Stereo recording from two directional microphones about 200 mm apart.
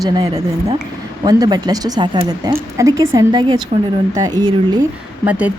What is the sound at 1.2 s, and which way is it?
Speech, 20° right (ahead or behind).